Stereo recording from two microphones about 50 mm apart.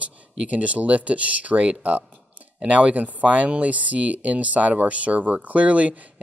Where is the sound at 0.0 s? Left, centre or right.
Right.